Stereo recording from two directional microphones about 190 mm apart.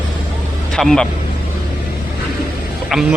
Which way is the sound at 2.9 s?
Centre (ahead or behind).